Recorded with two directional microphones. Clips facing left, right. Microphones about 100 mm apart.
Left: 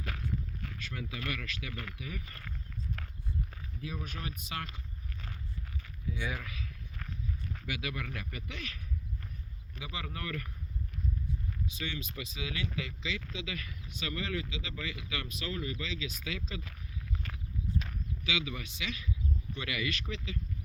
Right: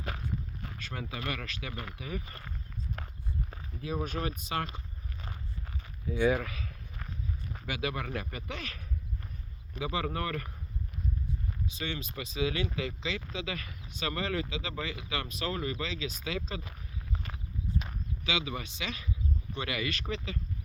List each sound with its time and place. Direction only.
0.0 s a sound: 25° right (ahead or behind)
0.8 s speech: 35° right (ahead or behind)
1.7 s speech: 20° right (ahead or behind)
2.0 s speech: 30° right (ahead or behind)
3.0 s walk: 25° right (ahead or behind)
3.5 s speech: 35° right (ahead or behind)
5.6 s a sound: 25° right (ahead or behind)
6.1 s speech: 40° right (ahead or behind)
6.9 s horse: 15° right (ahead or behind)
7.6 s speech: 35° right (ahead or behind)
11.6 s speech: 35° right (ahead or behind)
16.6 s a sound: 20° right (ahead or behind)
18.3 s speech: 30° right (ahead or behind)